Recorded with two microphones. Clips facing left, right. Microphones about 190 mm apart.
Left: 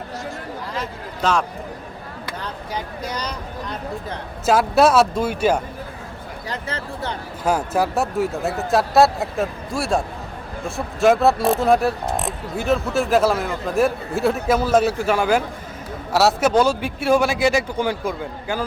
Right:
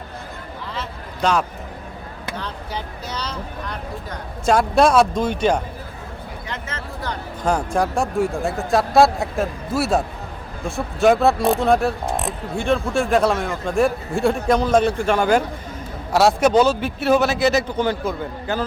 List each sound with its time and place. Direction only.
1.2 s speech: centre (ahead or behind)
2.4 s vehicle: 10° left (ahead or behind)
4.4 s a man's voice: 5° left (ahead or behind)
6.5 s a sound: 35° left (ahead or behind)
7.4 s a man's voice: 5° left (ahead or behind)